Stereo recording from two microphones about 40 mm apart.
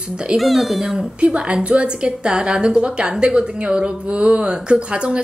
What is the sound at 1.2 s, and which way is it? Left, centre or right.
A woman's voice, right.